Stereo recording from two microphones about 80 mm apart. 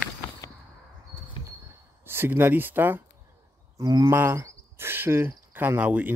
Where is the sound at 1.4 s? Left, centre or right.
Left.